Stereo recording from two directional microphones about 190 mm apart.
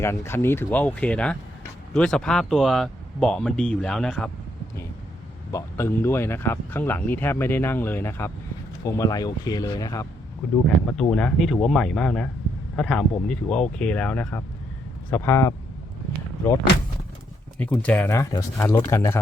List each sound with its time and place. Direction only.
0.0 s speech: 15° left (ahead or behind)
5.5 s a man's voice: 15° left (ahead or behind)
10.5 s speech: 5° left (ahead or behind)
17.6 s speech: 5° left (ahead or behind)